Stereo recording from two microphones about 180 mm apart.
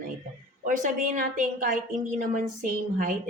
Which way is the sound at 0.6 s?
45° right (ahead or behind).